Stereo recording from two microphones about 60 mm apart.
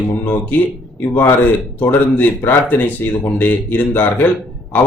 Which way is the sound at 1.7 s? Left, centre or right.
Left.